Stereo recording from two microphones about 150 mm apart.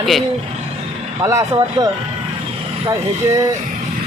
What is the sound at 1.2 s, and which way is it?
Speech, 20° right (ahead or behind).